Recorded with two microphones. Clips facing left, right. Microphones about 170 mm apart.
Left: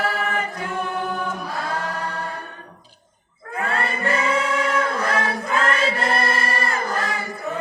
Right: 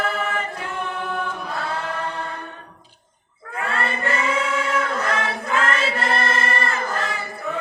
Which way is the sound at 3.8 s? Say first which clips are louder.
Even; 40° left (ahead or behind).